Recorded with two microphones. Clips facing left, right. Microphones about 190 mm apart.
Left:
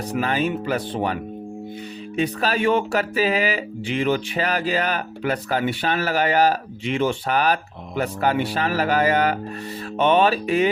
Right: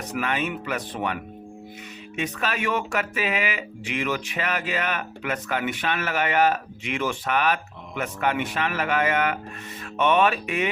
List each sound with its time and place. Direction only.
0.0 s speech: 35° left (ahead or behind)